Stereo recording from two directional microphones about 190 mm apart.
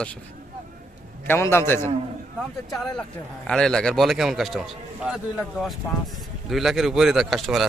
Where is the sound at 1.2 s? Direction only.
15° left (ahead or behind).